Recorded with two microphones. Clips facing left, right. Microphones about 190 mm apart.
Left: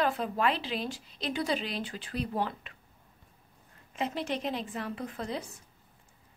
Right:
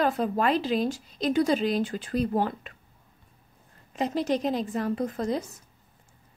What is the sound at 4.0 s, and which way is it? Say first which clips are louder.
A woman's voice: right 7 dB; 40° right (ahead or behind).